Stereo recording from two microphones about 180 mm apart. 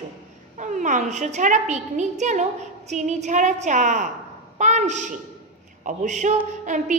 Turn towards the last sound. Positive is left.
turn(degrees=-45)  # may be behind; listen again after turning